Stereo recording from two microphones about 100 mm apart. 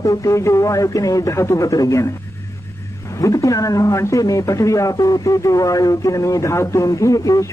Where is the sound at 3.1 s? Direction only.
35° left (ahead or behind).